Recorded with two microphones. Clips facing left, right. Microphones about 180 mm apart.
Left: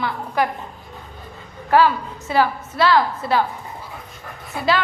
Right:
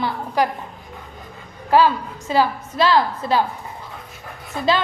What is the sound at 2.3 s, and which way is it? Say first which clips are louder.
A woman's voice: even; 15° right (ahead or behind).